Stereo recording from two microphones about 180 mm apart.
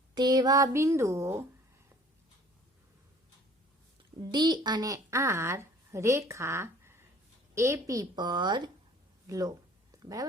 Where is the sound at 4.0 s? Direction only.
25° right (ahead or behind).